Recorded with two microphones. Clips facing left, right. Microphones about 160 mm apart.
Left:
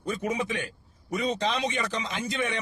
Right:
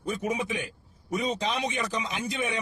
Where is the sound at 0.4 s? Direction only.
10° right (ahead or behind).